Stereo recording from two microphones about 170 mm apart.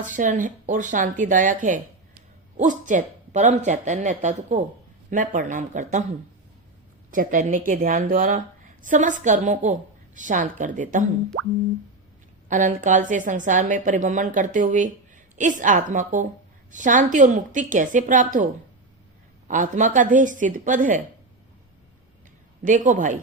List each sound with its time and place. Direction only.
0.0 s a woman's voice: 50° right (ahead or behind)
7.1 s a woman's voice: 50° right (ahead or behind)
12.5 s a woman's voice: 50° right (ahead or behind)
19.5 s a woman's voice: 45° right (ahead or behind)
22.6 s a woman's voice: 50° right (ahead or behind)